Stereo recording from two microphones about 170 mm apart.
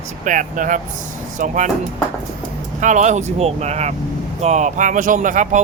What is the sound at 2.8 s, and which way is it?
Speech, 45° right (ahead or behind).